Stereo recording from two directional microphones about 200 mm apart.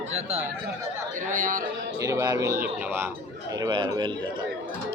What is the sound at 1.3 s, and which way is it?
Speech, 40° right (ahead or behind).